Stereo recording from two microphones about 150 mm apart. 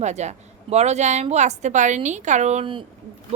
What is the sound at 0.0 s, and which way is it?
A woman's voice, 50° right (ahead or behind).